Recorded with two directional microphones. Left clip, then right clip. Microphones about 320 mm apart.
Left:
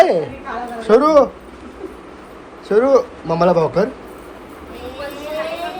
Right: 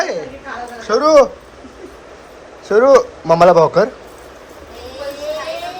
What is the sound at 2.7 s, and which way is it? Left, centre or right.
Speech, centre.